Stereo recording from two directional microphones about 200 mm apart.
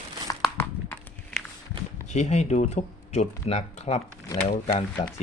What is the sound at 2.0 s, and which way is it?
Speech, 35° left (ahead or behind).